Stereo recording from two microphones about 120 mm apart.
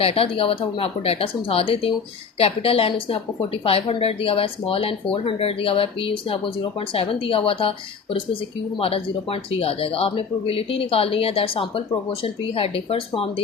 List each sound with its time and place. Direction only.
0.0 s a woman's voice: 50° left (ahead or behind)
8.8 s a woman's voice: 50° left (ahead or behind)